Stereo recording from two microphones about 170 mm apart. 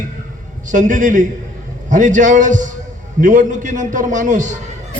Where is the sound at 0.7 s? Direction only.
50° right (ahead or behind).